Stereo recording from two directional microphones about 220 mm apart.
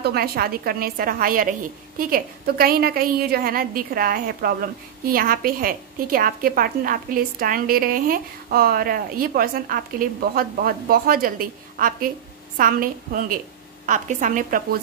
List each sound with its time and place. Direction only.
0.0 s a woman's voice: 45° right (ahead or behind)